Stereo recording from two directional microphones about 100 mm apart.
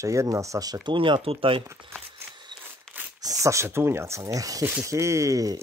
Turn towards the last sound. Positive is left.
turn(degrees=-35)  # may be behind; listen again after turning